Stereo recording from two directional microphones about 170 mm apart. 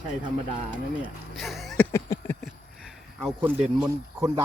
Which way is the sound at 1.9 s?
15° left (ahead or behind).